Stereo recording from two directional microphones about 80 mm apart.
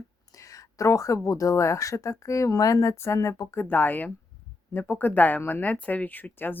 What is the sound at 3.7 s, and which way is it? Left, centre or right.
Speech, left.